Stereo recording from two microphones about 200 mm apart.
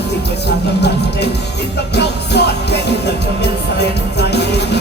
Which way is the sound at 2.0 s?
55° left (ahead or behind).